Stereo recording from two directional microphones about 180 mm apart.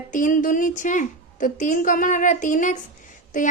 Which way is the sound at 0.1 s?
45° left (ahead or behind).